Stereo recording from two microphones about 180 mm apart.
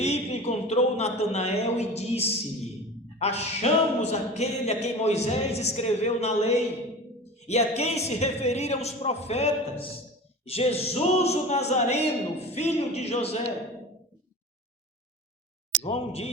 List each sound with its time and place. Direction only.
0.0 s speech: 35° left (ahead or behind)
7.3 s a sound: 40° left (ahead or behind)
7.8 s speech: 35° left (ahead or behind)
15.8 s speech: 35° left (ahead or behind)